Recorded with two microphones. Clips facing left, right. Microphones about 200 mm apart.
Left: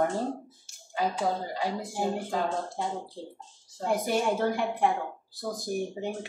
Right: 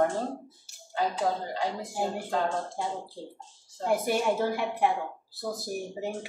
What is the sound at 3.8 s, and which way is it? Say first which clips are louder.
Speech: right 1 dB; 5° right (ahead or behind).